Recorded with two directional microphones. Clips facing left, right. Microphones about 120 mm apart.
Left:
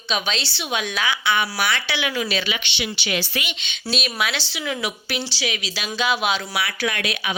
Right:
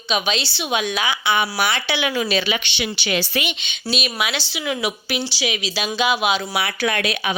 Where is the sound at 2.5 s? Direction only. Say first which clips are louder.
Right 3 dB; 45° right (ahead or behind).